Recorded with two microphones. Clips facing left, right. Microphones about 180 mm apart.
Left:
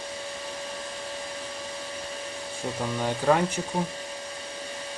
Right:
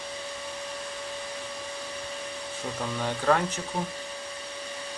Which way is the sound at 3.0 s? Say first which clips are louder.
Left 2 dB; 10° left (ahead or behind).